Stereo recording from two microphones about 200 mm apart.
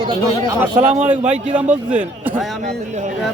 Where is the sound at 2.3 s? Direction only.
35° right (ahead or behind).